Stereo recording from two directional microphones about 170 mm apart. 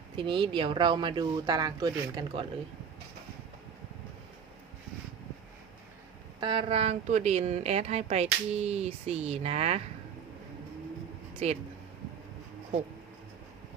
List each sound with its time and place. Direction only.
0.2 s speech: 30° right (ahead or behind)
6.4 s a woman's voice: 30° right (ahead or behind)
11.4 s a woman's voice: 40° right (ahead or behind)